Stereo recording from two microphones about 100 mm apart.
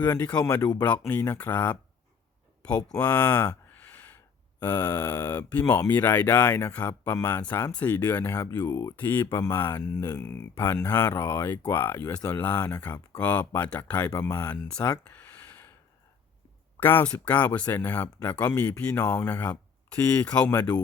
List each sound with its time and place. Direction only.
0.0 s speech: 20° left (ahead or behind)
0.3 s speech: 40° left (ahead or behind)
1.0 s speech: 25° left (ahead or behind)
3.0 s speech: 20° left (ahead or behind)
3.7 s a sound: 15° left (ahead or behind)
4.6 s speech: 20° left (ahead or behind)
8.7 s speech: 35° left (ahead or behind)
9.0 s speech: 20° left (ahead or behind)
9.3 s speech: 30° left (ahead or behind); by 14.8 s 15° left (ahead or behind)
14.8 s a sound: 15° left (ahead or behind)
16.8 s speech: 20° left (ahead or behind)
20.0 s speech: 30° left (ahead or behind)
20.2 s speech: 10° left (ahead or behind)